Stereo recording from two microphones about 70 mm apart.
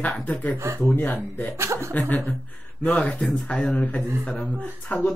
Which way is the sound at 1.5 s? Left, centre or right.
Right.